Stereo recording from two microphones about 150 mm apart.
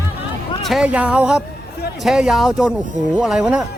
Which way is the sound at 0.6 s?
5° right (ahead or behind).